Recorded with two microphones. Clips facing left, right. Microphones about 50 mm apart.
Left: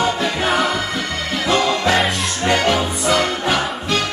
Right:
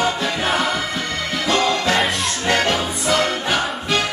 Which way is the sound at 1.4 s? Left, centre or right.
Centre.